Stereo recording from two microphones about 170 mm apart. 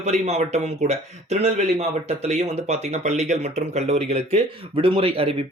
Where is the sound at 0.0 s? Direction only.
40° right (ahead or behind).